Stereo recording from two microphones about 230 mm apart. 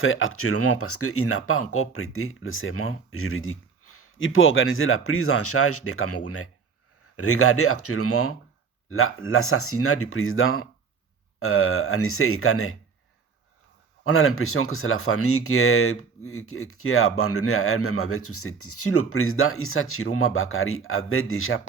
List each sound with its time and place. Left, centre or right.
0.0 s speech: left
14.0 s speech: left